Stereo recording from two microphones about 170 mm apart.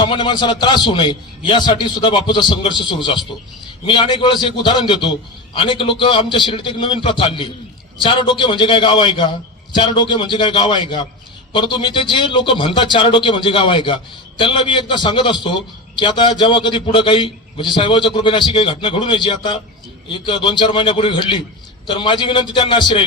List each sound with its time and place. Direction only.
0.0 s a man's voice: 30° left (ahead or behind)